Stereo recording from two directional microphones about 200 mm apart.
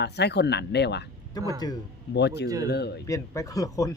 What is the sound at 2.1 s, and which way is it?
Speech, 55° left (ahead or behind).